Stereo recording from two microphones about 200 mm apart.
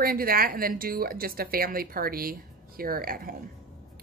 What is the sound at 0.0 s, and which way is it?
A woman's voice, 45° right (ahead or behind).